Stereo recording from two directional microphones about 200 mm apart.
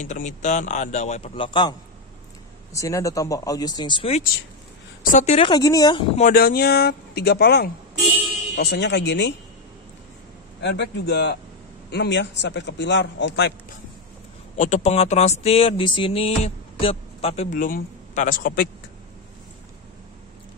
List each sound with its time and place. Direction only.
0.0 s speech: 40° left (ahead or behind)
5.5 s a woman's voice: 20° left (ahead or behind)
6.1 s a man's voice: 45° left (ahead or behind)
10.6 s a man's voice: 55° left (ahead or behind)
14.6 s speech: 35° left (ahead or behind)
17.6 s speech: 45° left (ahead or behind)